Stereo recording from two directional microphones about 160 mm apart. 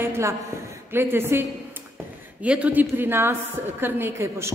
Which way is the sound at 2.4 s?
10° right (ahead or behind).